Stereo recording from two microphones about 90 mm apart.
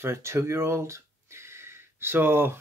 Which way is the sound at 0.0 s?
30° right (ahead or behind).